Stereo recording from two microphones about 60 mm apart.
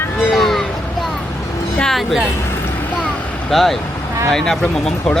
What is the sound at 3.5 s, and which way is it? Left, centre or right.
Speech, centre.